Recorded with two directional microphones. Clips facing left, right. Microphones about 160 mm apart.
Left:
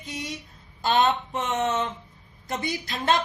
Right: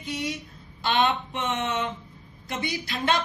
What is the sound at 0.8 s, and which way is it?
Speech, 40° left (ahead or behind).